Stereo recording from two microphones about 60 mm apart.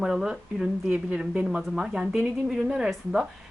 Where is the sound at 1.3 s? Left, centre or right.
Centre.